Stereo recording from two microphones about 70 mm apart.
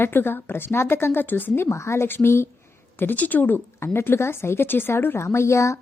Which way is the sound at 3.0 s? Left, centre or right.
Left.